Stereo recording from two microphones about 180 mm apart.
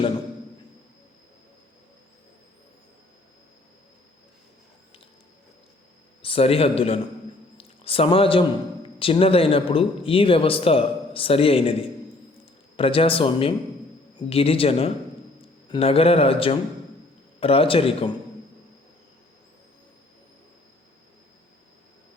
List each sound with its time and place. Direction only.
6.2 s speech: 30° left (ahead or behind)
7.5 s a sound: 30° left (ahead or behind)
9.0 s speech: 30° left (ahead or behind)